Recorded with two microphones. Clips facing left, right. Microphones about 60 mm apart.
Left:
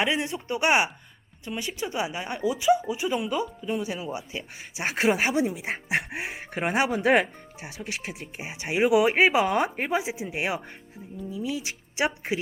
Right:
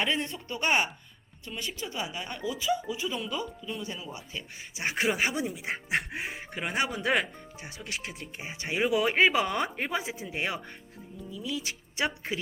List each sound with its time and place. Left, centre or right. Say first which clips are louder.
0.0 s speech: left 4 dB; centre
6.5 s speech: left 6 dB; left
11.3 s speech: left 4 dB; left